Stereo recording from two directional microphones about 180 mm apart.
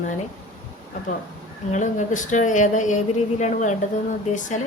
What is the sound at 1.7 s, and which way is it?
A woman's voice, 45° left (ahead or behind).